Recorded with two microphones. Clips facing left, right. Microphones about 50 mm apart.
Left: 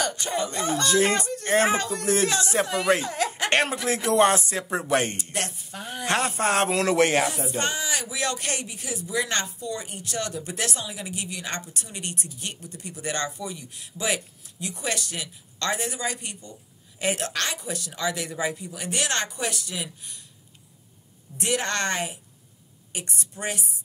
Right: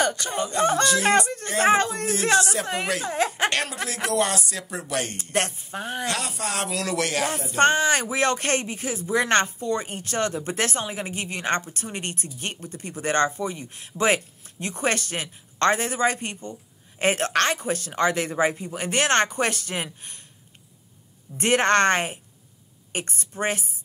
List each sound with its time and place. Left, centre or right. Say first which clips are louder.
0.3 s speech: right 4 dB; right
3.0 s a sound: right 3 dB; right
3.4 s a woman's voice: left 2 dB; left
5.3 s speech: right 5 dB; right
6.0 s speech: left 10 dB; left
7.5 s speech: right 8 dB; right
21.4 s speech: right 7 dB; right